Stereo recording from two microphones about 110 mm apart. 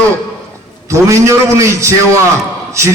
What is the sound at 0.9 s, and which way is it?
A man's voice, 25° right (ahead or behind).